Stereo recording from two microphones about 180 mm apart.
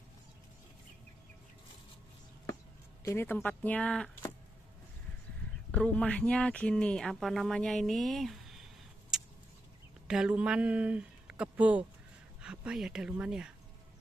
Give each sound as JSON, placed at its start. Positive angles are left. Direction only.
{"t": 3.0, "sound": "speech", "side_deg": 15}
{"t": 5.7, "sound": "speech", "side_deg": 5}
{"t": 9.1, "sound": "a sound", "side_deg": -5}
{"t": 10.0, "sound": "speech", "side_deg": -5}